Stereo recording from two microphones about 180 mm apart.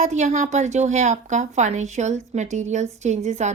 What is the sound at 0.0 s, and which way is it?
A woman's voice, 40° right (ahead or behind).